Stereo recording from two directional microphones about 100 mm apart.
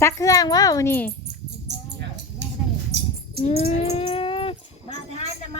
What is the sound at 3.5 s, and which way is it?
Dog, 90° left.